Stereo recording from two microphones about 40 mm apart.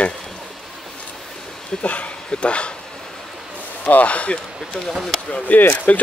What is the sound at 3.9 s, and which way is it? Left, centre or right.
Speech, left.